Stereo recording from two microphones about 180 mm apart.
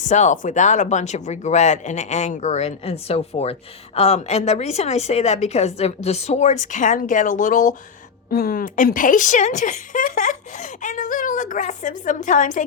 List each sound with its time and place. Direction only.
0.1 s a woman's voice: 40° left (ahead or behind)